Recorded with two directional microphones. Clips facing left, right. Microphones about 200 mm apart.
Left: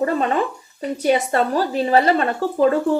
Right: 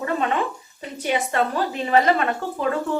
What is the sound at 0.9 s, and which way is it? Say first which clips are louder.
A woman's voice: left 4 dB; 40° left (ahead or behind).